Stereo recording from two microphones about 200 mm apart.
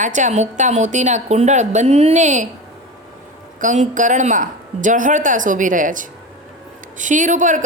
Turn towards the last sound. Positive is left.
turn(degrees=-40)  # may be behind; listen again after turning